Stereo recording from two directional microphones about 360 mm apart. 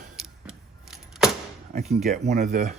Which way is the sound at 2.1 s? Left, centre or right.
Right.